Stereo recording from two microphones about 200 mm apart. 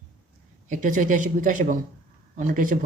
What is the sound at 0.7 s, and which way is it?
Speech, 40° right (ahead or behind).